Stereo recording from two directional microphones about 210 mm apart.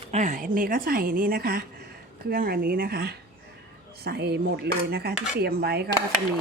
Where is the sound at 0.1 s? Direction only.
35° right (ahead or behind).